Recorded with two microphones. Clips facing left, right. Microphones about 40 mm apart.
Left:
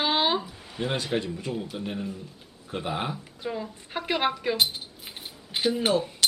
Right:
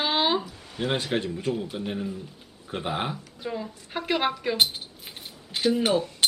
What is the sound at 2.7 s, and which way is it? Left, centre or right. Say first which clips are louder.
Speech: right 1 dB; centre.